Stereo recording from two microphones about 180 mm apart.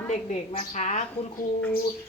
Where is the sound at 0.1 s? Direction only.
40° left (ahead or behind).